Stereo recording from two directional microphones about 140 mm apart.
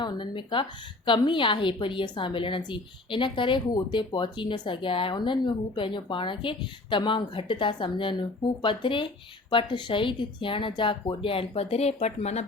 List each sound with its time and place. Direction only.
0.0 s a woman's voice: 35° left (ahead or behind); by 12.5 s 50° left (ahead or behind)